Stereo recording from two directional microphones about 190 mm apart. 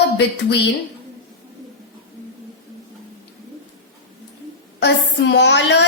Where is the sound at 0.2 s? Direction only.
65° left (ahead or behind).